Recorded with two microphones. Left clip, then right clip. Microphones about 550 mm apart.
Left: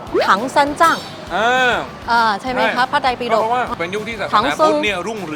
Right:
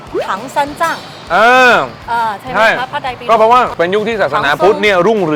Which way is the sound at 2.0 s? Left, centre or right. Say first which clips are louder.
Even; left.